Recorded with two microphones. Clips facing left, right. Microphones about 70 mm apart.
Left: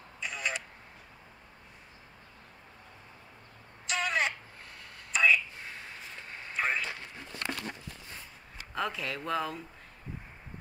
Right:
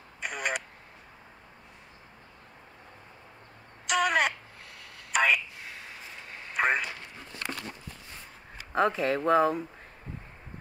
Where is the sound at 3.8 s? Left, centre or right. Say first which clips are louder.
Right 5 dB; right.